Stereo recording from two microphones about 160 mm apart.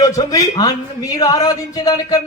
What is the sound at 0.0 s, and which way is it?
Speech, 20° left (ahead or behind).